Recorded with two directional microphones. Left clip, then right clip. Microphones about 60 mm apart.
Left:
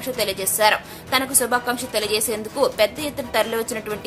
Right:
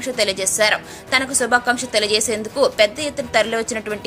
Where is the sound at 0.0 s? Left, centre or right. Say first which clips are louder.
Right 4 dB; right.